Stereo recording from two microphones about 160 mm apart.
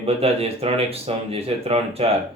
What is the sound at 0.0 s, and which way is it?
Speech, 40° right (ahead or behind).